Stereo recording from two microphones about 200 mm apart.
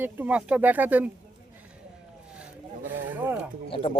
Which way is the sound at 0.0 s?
10° right (ahead or behind).